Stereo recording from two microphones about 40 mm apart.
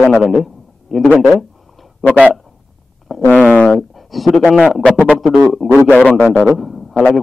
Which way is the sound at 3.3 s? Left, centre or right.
Left.